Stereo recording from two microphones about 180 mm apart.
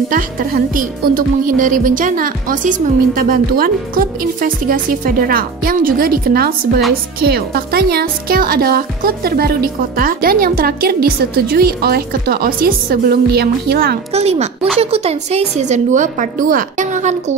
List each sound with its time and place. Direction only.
0.1 s speech: 50° right (ahead or behind)
14.1 s a woman's voice: 35° right (ahead or behind)